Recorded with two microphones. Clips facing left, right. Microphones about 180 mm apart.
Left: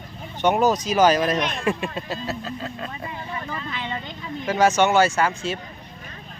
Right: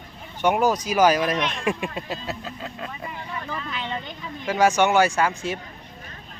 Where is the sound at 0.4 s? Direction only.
10° right (ahead or behind).